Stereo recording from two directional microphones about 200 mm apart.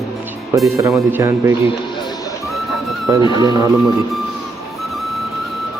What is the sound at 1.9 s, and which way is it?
Music, 20° left (ahead or behind).